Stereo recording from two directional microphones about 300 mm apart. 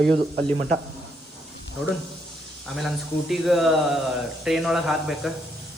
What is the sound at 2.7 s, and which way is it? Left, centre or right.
A man's voice, centre.